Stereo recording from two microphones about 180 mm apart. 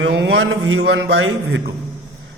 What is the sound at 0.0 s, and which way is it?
A man's voice, 75° right (ahead or behind).